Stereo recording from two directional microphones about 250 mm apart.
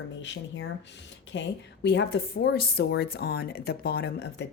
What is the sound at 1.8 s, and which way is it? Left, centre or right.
Speech, left.